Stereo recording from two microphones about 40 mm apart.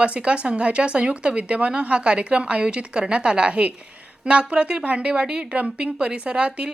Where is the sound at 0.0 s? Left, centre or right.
Right.